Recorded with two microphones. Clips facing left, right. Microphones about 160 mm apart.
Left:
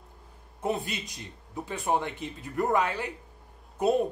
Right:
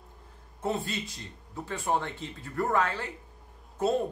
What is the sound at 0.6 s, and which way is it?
Speech, 15° left (ahead or behind).